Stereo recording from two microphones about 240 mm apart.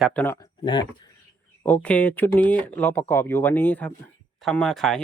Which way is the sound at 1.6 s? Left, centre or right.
Centre.